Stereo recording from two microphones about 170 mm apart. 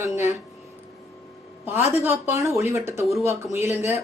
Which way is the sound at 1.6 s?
10° right (ahead or behind).